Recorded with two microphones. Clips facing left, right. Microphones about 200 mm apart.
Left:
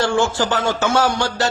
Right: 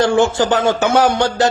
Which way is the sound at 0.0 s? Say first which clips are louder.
Right 5 dB; 20° right (ahead or behind).